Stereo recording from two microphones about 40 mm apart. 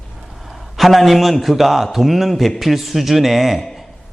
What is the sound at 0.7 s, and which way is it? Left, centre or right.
A man's voice, centre.